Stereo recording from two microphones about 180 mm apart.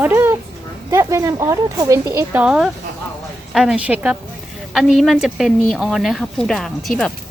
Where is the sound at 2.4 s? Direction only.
5° right (ahead or behind).